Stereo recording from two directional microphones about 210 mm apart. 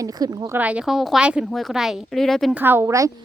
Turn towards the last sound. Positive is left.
turn(degrees=-15)  # may be behind; listen again after turning